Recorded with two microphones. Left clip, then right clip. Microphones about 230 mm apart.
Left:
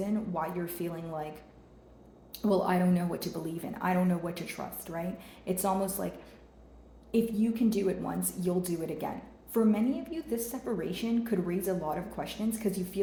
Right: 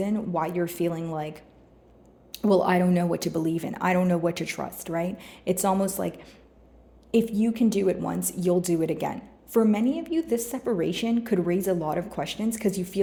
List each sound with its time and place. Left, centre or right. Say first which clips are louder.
0.0 s a woman's voice: right 6 dB; right